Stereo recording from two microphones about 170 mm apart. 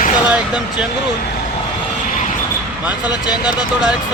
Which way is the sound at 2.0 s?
50° left (ahead or behind).